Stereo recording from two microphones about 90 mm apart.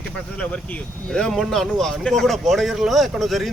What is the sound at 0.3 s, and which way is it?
Speech, 10° left (ahead or behind).